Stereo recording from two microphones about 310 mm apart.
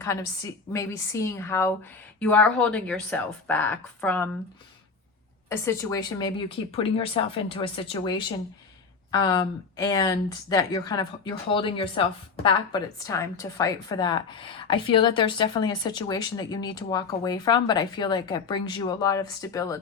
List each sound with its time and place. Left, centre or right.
0.0 s a woman's voice: centre
5.5 s speech: centre
9.1 s speech: centre